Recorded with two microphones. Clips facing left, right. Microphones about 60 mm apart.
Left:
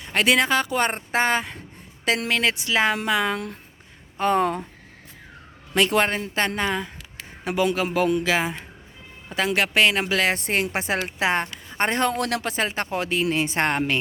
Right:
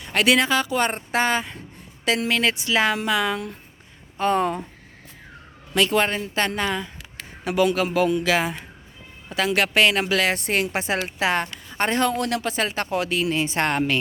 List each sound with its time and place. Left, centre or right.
0.0 s a sound: left
0.3 s speech: left
2.0 s speech: left
2.4 s speech: left
4.2 s speech: left
5.9 s speech: left
8.2 s speech: left
9.3 s speech: left
9.6 s speech: centre
10.2 s speech: left
12.1 s speech: left
12.5 s speech: left
13.3 s speech: left
13.6 s speech: left